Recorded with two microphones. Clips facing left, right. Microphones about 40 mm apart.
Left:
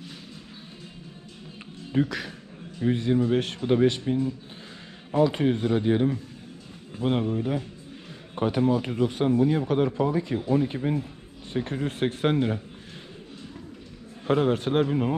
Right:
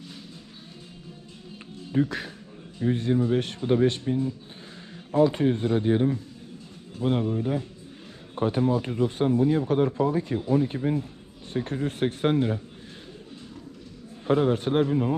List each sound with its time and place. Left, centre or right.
2.9 s speech: left
5.2 s speech: left
7.0 s speech: left
8.4 s speech: left
14.2 s speech: left